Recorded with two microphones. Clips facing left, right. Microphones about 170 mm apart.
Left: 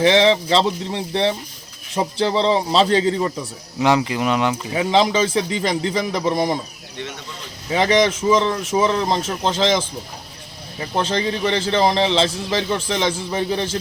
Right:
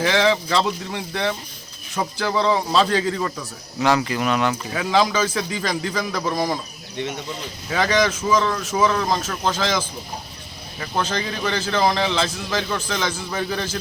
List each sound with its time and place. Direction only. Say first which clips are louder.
0.0 s a man's voice: left 4 dB; 25° left (ahead or behind)
7.7 s a man's voice: left 3 dB; 20° left (ahead or behind)